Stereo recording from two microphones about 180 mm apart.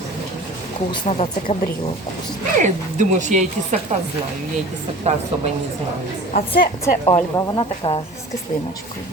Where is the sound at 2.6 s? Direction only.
45° right (ahead or behind).